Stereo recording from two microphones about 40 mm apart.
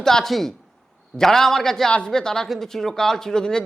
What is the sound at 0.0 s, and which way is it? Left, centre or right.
Speech, centre.